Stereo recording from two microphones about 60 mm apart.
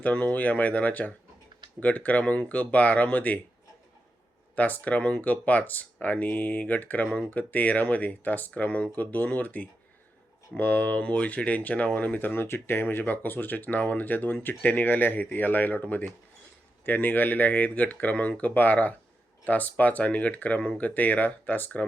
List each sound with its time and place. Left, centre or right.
0.0 s speech: left
4.5 s speech: left